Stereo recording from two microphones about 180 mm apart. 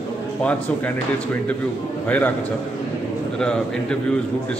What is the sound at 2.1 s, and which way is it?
Speech, 10° left (ahead or behind).